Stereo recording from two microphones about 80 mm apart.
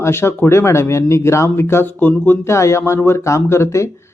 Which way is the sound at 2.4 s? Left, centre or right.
Left.